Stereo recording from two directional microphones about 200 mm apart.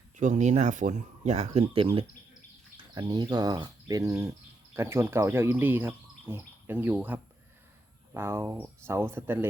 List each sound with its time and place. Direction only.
0.2 s speech: 35° right (ahead or behind); by 9.5 s 10° right (ahead or behind)